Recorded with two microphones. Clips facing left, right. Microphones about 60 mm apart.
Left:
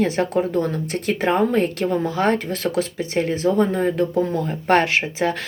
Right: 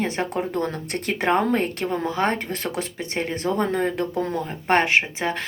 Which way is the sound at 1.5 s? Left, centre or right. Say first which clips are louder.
Left 4 dB; right.